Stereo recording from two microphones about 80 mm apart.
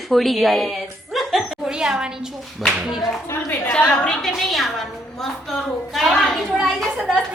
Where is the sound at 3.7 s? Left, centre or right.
Centre.